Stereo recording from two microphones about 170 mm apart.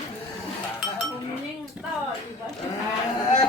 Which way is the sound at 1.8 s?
10° right (ahead or behind).